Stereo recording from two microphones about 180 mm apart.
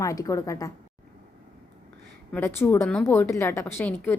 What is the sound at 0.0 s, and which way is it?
Speech, 15° left (ahead or behind).